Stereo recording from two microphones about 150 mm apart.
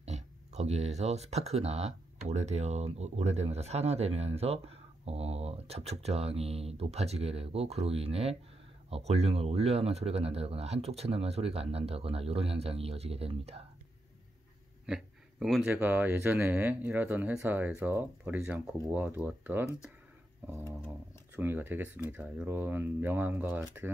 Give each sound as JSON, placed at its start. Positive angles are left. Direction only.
{"t": 0.0, "sound": "speech", "side_deg": -45}
{"t": 14.9, "sound": "a sound", "side_deg": -5}
{"t": 15.7, "sound": "speech", "side_deg": -10}
{"t": 21.4, "sound": "speech", "side_deg": -15}